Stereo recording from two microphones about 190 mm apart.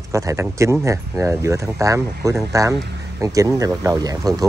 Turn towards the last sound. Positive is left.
turn(degrees=-20)  # may be behind; listen again after turning